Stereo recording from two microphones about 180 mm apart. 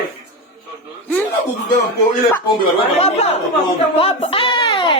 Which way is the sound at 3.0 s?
35° left (ahead or behind).